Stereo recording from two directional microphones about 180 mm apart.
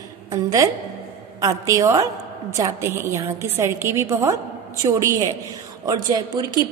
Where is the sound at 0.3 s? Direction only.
20° right (ahead or behind).